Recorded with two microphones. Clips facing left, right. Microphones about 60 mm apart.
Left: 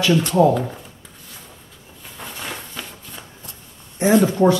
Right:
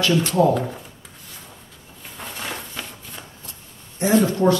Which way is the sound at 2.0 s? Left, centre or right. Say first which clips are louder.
Even; centre.